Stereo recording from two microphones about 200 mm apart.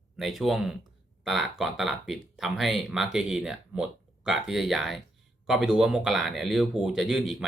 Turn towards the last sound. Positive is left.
turn(degrees=0)  # may be behind; listen again after turning